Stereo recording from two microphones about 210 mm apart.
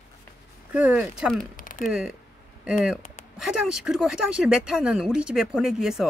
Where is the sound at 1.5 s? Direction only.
40° left (ahead or behind).